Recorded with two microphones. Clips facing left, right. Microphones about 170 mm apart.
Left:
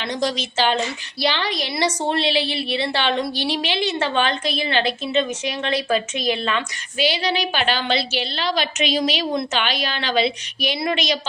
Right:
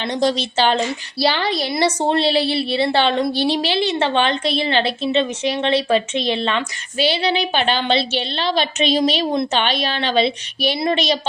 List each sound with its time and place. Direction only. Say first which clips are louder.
0.0 s a woman's voice: right 4 dB; 30° right (ahead or behind)